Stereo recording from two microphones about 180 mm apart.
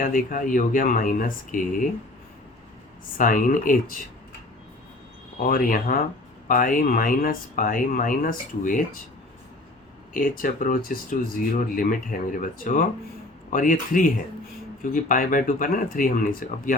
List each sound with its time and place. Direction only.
0.0 s speech: 50° left (ahead or behind)
3.2 s speech: 50° left (ahead or behind)
5.4 s speech: 50° left (ahead or behind)
10.2 s speech: 50° left (ahead or behind)